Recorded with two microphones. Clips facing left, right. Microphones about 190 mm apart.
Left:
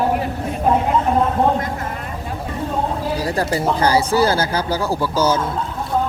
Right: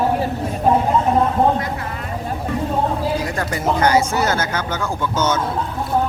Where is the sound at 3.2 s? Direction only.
35° left (ahead or behind).